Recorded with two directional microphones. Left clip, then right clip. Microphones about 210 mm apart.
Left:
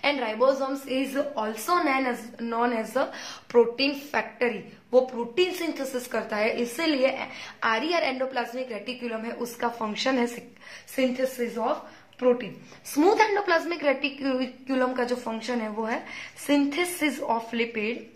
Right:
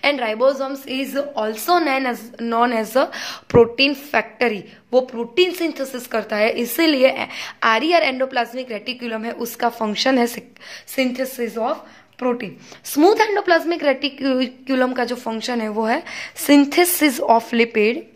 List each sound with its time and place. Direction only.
0.0 s a woman's voice: 35° right (ahead or behind)
12.9 s a woman's voice: 35° right (ahead or behind)